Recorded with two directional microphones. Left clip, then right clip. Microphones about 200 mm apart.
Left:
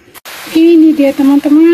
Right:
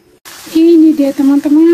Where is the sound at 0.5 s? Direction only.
Centre (ahead or behind).